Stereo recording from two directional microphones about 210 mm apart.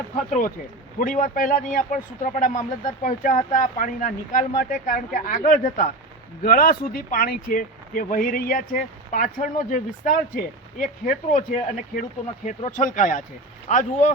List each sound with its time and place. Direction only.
0.3 s a man's voice: 40° left (ahead or behind)